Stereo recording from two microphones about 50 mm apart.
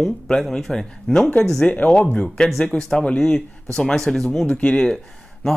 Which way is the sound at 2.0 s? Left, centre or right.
Left.